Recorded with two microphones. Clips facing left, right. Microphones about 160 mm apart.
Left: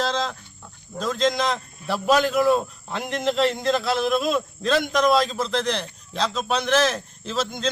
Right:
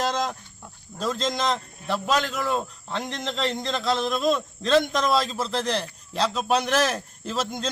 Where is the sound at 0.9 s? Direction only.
5° right (ahead or behind).